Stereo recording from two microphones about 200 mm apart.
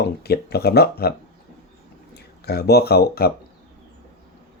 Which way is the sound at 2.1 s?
55° left (ahead or behind).